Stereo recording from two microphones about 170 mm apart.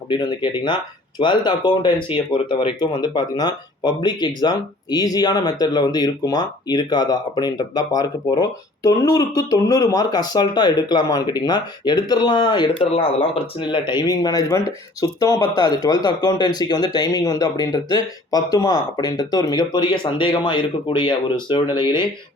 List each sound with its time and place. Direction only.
0.1 s speech: 25° left (ahead or behind)